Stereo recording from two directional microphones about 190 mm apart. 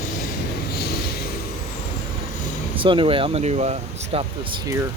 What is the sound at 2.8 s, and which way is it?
Speech, 25° right (ahead or behind).